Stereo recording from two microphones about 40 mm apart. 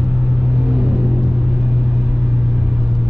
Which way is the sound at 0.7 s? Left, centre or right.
Right.